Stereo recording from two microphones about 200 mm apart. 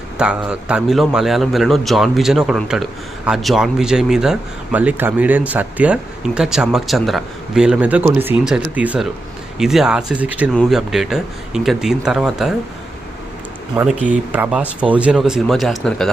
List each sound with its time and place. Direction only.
0.2 s speech: 5° right (ahead or behind)
13.7 s speech: 5° right (ahead or behind)